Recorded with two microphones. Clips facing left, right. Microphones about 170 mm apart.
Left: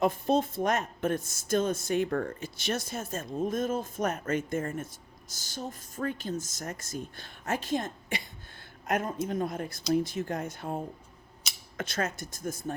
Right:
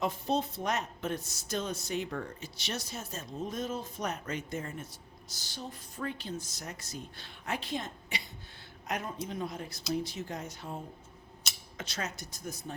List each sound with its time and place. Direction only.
0.0 s speech: 50° left (ahead or behind)
11.4 s a sound: centre (ahead or behind)
11.8 s speech: 50° left (ahead or behind)